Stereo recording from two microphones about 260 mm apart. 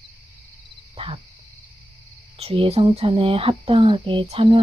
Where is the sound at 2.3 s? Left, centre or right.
Right.